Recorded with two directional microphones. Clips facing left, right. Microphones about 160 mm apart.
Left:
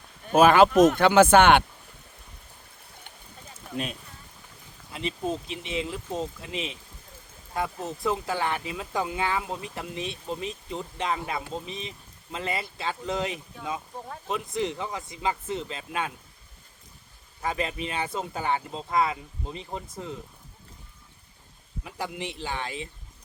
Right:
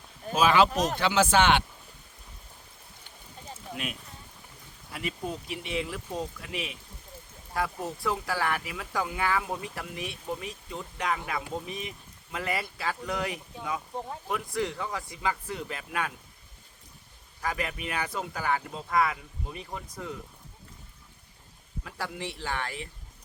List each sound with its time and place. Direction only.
0.3 s speech: 50° left (ahead or behind)
4.9 s speech: 25° left (ahead or behind)
7.9 s speech: 20° left (ahead or behind)
17.4 s speech: 25° left (ahead or behind)
21.8 s speech: 15° left (ahead or behind)